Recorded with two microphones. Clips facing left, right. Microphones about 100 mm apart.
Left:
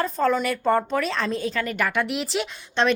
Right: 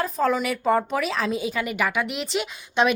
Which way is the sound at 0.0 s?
Centre (ahead or behind).